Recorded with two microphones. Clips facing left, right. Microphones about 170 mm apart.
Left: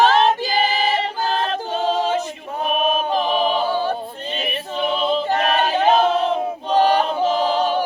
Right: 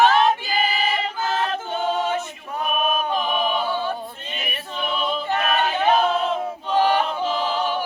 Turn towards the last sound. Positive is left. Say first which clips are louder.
# left 5 dB
turn(degrees=40)  # may be behind; listen again after turning